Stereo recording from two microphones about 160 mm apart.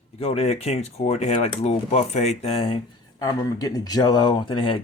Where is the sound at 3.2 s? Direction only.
20° left (ahead or behind).